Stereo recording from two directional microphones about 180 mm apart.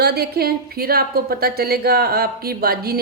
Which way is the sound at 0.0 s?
60° right (ahead or behind).